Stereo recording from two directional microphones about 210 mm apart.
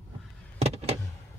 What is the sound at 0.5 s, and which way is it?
Vehicle, 30° right (ahead or behind).